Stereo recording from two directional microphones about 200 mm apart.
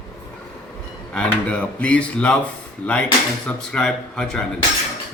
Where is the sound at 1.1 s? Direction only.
5° left (ahead or behind).